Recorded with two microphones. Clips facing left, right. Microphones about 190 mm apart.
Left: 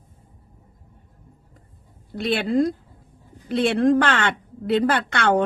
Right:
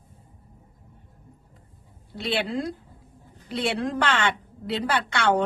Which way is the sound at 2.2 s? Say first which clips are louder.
Left 7 dB; 50° left (ahead or behind).